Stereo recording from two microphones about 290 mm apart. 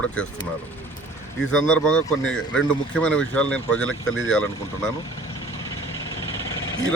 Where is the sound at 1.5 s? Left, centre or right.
Centre.